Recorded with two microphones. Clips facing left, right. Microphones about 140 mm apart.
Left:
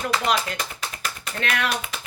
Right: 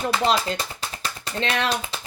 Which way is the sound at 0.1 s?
30° right (ahead or behind).